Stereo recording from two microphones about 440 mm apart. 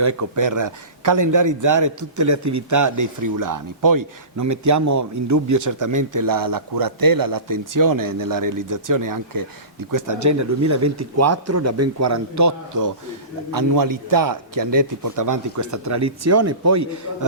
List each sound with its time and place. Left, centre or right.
0.0 s a man's voice: right